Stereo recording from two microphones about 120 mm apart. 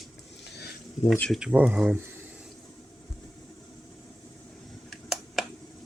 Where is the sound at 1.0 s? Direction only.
70° left (ahead or behind).